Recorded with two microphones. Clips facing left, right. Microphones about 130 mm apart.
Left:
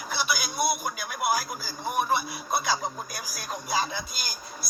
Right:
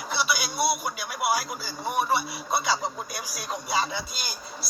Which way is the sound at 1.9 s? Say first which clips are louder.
Right 1 dB; centre (ahead or behind).